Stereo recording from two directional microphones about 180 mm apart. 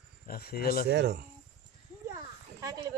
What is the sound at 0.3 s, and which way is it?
Speech, 60° left (ahead or behind).